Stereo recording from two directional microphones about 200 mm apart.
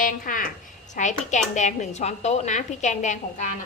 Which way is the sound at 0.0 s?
45° left (ahead or behind).